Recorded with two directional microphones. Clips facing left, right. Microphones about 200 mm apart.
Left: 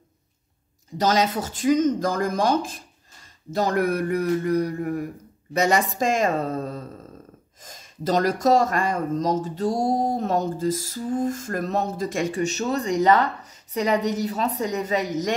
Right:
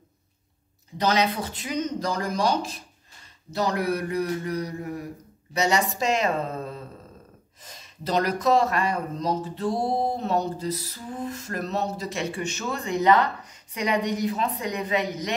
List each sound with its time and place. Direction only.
0.9 s speech: 45° left (ahead or behind)